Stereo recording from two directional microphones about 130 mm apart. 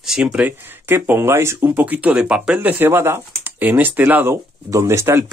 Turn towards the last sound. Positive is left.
turn(degrees=-20)  # may be behind; listen again after turning